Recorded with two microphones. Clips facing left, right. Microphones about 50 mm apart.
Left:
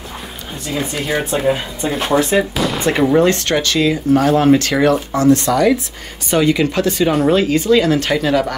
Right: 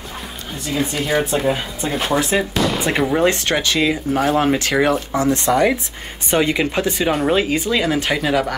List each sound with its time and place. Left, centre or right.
0.7 s speech: centre
3.3 s speech: centre
7.1 s speech: centre